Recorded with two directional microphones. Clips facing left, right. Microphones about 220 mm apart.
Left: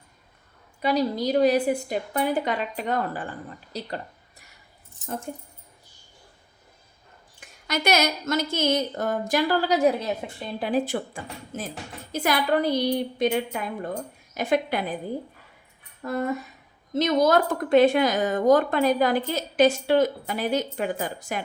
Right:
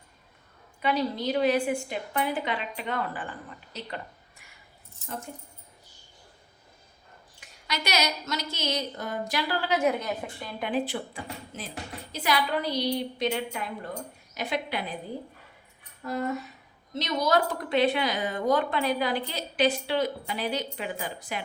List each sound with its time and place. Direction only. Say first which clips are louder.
0.8 s a woman's voice: left 4 dB; 40° left (ahead or behind)
7.3 s speech: left 6 dB; 50° left (ahead or behind); by 10.7 s 25° left (ahead or behind)
10.7 s speech: left 4 dB; 45° left (ahead or behind)
16.9 s speech: left 6 dB; 50° left (ahead or behind)